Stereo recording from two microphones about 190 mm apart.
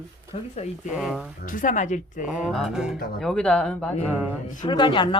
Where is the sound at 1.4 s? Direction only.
45° left (ahead or behind).